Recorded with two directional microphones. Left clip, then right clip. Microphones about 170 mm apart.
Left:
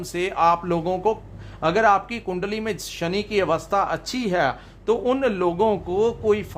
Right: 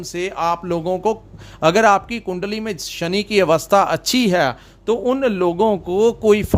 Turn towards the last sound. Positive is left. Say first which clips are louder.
# right 6 dB
turn(degrees=-45)  # may be behind; listen again after turning